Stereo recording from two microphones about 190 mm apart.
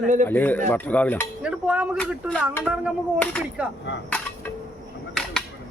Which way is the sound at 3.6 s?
5° right (ahead or behind).